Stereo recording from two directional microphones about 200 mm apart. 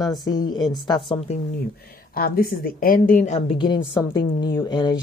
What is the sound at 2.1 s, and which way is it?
A woman's voice, 50° left (ahead or behind).